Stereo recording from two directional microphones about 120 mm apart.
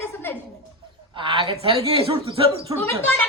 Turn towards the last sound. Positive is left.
turn(degrees=15)  # may be behind; listen again after turning